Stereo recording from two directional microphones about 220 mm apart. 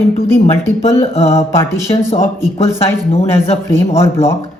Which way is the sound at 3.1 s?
30° left (ahead or behind).